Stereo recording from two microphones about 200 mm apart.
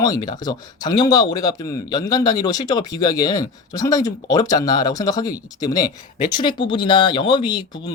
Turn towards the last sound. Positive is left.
turn(degrees=20)  # may be behind; listen again after turning